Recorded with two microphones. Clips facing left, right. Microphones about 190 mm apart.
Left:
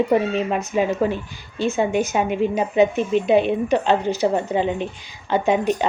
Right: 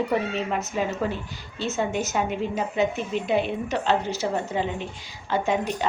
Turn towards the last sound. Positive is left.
turn(degrees=20)  # may be behind; listen again after turning